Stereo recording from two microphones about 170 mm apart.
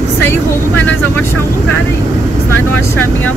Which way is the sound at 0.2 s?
10° left (ahead or behind).